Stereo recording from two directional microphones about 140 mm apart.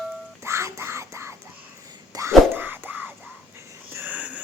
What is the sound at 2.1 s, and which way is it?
Whispering, 20° right (ahead or behind).